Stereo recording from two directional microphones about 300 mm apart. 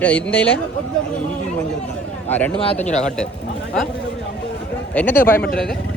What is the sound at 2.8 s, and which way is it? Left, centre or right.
Speech, left.